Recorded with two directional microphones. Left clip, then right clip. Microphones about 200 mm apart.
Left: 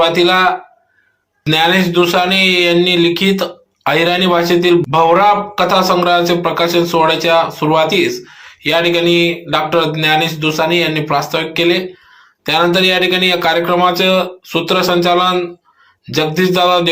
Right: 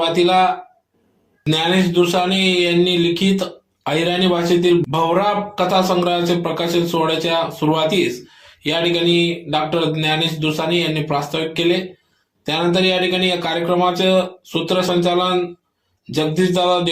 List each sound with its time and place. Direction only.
0.0 s a man's voice: centre (ahead or behind)